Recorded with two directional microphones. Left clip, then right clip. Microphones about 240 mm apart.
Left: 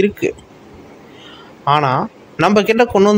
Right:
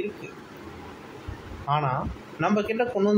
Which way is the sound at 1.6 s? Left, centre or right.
Left.